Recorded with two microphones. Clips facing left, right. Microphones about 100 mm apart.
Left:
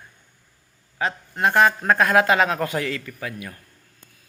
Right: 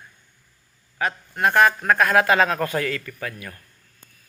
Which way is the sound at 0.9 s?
20° left (ahead or behind).